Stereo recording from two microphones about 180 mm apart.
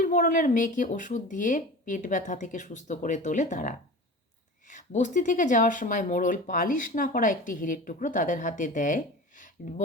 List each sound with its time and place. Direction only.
0.0 s speech: 45° left (ahead or behind)